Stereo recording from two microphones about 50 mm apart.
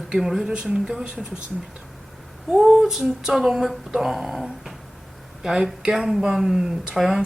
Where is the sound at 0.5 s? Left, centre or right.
Centre.